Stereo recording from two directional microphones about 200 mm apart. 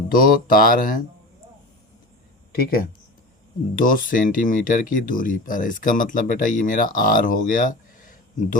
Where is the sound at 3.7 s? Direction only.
40° left (ahead or behind).